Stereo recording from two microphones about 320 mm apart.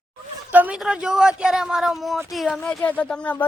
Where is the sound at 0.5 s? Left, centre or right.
Centre.